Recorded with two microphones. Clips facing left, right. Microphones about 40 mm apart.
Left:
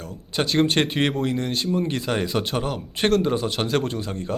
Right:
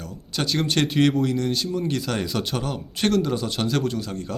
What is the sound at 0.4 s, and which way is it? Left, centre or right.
Speech, centre.